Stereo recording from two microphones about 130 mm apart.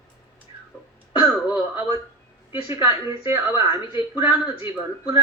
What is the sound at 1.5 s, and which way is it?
A woman's voice, 15° right (ahead or behind).